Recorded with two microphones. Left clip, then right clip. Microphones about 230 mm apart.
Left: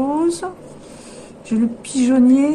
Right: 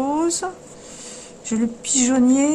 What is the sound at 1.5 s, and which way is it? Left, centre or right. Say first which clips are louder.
A woman's voice: left 1 dB; centre.